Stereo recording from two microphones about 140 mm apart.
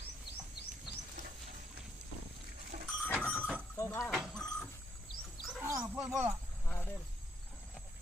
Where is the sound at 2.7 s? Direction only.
90° right.